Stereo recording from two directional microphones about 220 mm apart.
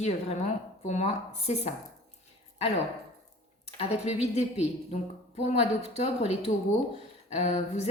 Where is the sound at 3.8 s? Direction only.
30° left (ahead or behind).